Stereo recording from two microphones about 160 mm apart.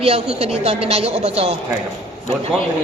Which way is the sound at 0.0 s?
40° right (ahead or behind).